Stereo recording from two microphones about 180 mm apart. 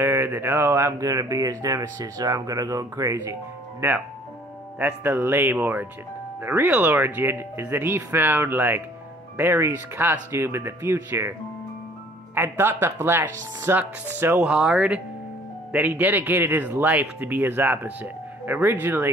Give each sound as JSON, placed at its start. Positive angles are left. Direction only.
{"t": 0.0, "sound": "speech", "side_deg": -15}
{"t": 4.7, "sound": "speech", "side_deg": -10}
{"t": 12.4, "sound": "speech", "side_deg": -10}